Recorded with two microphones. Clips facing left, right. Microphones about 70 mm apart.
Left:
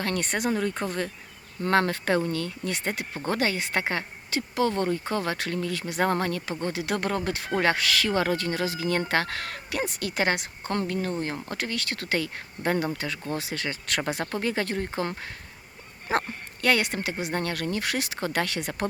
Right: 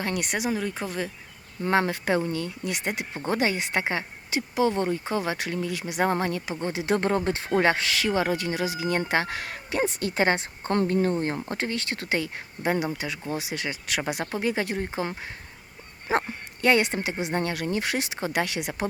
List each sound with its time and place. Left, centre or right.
0.0 s speech: centre
1.6 s a woman's voice: centre